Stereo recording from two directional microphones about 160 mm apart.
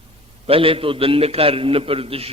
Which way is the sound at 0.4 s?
35° right (ahead or behind).